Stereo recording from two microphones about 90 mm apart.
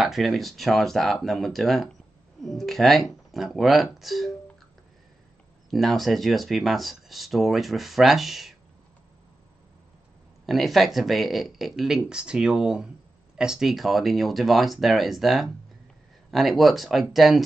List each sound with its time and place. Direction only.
0.0 s speech: centre (ahead or behind)
5.7 s speech: centre (ahead or behind)
10.4 s speech: centre (ahead or behind)